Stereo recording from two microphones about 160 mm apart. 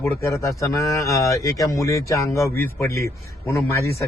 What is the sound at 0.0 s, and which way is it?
A man's voice, 15° left (ahead or behind).